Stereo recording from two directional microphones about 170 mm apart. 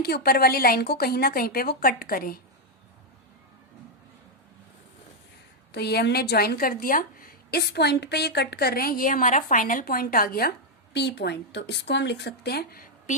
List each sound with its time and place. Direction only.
0.0 s a woman's voice: 70° left (ahead or behind)
5.7 s a woman's voice: 75° left (ahead or behind)
10.9 s speech: 80° left; by 13.1 s 60° left (ahead or behind)